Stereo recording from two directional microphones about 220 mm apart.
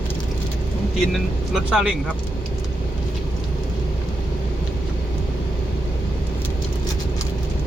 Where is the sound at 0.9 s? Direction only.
Centre (ahead or behind).